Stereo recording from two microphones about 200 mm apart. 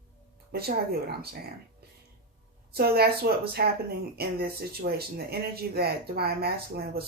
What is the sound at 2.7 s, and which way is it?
Speech, 50° right (ahead or behind).